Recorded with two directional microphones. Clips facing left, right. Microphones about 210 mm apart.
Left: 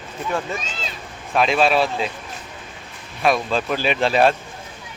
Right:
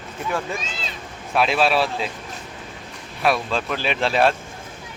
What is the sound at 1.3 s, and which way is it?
Speech, 5° right (ahead or behind).